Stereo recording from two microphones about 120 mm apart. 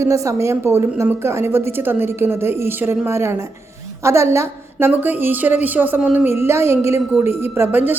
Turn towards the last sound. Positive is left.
turn(degrees=-15)  # may be behind; listen again after turning